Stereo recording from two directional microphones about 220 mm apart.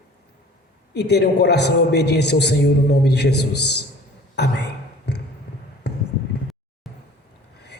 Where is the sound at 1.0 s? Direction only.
50° left (ahead or behind).